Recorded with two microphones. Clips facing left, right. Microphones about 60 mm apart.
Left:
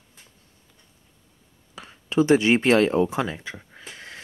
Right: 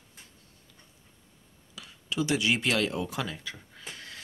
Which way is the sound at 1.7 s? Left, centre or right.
Left.